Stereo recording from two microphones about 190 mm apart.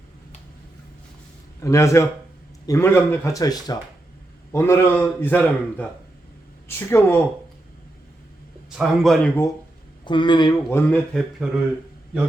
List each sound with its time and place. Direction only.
1.6 s a man's voice: 15° left (ahead or behind)
8.7 s a man's voice: centre (ahead or behind)
10.0 s speech: 25° left (ahead or behind)
10.7 s a man's voice: 10° left (ahead or behind)